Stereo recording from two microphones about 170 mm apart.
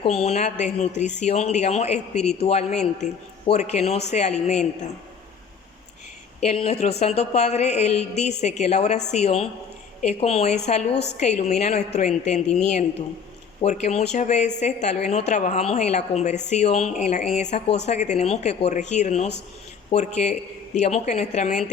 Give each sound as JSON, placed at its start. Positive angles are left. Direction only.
{"t": 0.0, "sound": "speech", "side_deg": 40}
{"t": 6.4, "sound": "speech", "side_deg": 40}
{"t": 13.6, "sound": "speech", "side_deg": 40}